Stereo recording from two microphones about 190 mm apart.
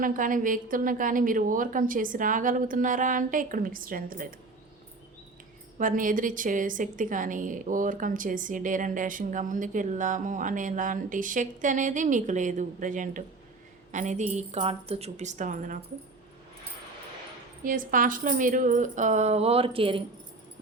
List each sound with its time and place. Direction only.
0.0 s a woman's voice: 45° right (ahead or behind)
5.8 s a woman's voice: 45° right (ahead or behind)
17.6 s a woman's voice: 45° right (ahead or behind); by 20.0 s 30° right (ahead or behind)